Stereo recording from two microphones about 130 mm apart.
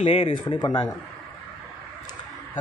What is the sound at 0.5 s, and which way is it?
Speech, 30° left (ahead or behind).